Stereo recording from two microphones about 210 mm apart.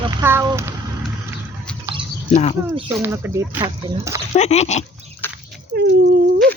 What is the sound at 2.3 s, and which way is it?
Speech, 30° left (ahead or behind).